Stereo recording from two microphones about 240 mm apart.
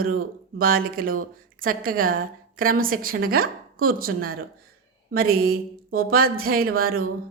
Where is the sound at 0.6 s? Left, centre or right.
Right.